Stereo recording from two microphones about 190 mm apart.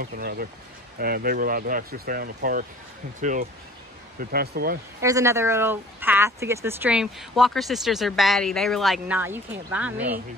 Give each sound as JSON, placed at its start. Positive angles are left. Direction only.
{"t": 0.0, "sound": "speech", "side_deg": -55}
{"t": 4.2, "sound": "speech", "side_deg": -50}
{"t": 5.0, "sound": "speech", "side_deg": -15}